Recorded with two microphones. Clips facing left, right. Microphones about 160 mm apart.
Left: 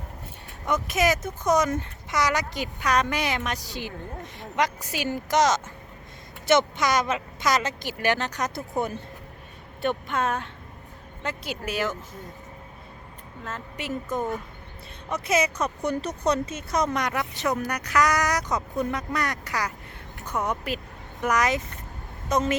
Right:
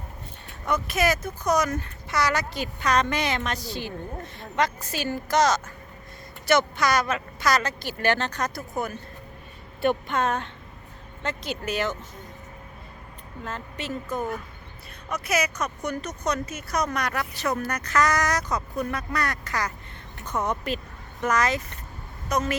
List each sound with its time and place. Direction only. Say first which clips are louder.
0.6 s speech: left 1 dB; 20° left (ahead or behind)
9.8 s speech: right 2 dB; centre (ahead or behind)
13.7 s speech: left 2 dB; 15° left (ahead or behind)